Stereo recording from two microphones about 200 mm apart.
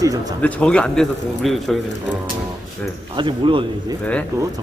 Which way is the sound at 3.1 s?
25° right (ahead or behind).